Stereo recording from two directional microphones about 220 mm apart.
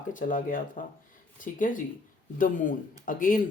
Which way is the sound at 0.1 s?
40° left (ahead or behind).